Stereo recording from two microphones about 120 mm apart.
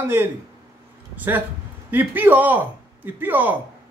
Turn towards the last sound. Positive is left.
turn(degrees=-15)  # may be behind; listen again after turning